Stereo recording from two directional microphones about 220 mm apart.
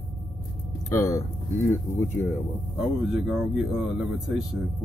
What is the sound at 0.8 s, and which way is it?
Speech, 15° left (ahead or behind).